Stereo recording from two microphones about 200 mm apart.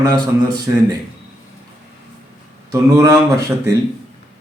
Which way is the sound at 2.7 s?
15° right (ahead or behind).